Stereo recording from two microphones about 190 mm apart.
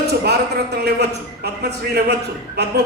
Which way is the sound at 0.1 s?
60° right (ahead or behind).